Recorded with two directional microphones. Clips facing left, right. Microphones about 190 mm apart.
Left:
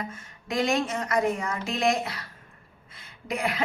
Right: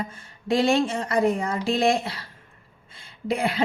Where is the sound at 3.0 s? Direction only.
30° right (ahead or behind).